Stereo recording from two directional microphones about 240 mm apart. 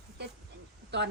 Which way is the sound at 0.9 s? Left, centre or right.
Right.